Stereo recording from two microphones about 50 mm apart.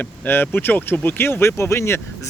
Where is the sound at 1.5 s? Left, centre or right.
Left.